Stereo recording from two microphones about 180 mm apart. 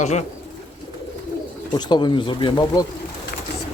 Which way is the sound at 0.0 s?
40° left (ahead or behind).